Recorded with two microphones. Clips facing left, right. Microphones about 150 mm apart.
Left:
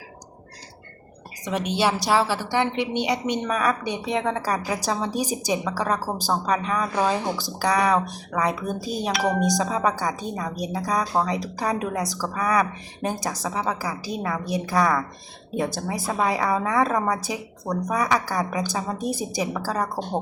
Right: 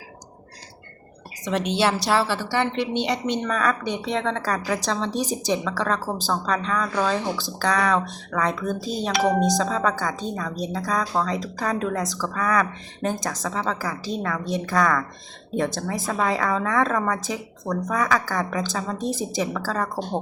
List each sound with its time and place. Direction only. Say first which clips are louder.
1.5 s a woman's voice: right 1 dB; 10° left (ahead or behind)
9.1 s speech: right 4 dB; 20° right (ahead or behind)
9.4 s a woman's voice: right 1 dB; 15° left (ahead or behind)